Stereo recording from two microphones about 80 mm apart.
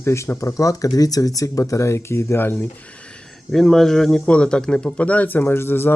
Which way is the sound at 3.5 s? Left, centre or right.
Centre.